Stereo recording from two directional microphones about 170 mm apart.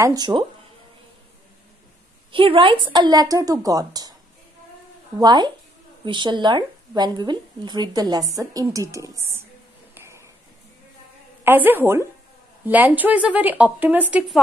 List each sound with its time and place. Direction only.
0.0 s a woman's voice: 25° right (ahead or behind)
2.3 s a woman's voice: 30° right (ahead or behind)
5.2 s a woman's voice: 25° right (ahead or behind)
9.9 s a sound: 15° right (ahead or behind)
11.4 s speech: 10° right (ahead or behind)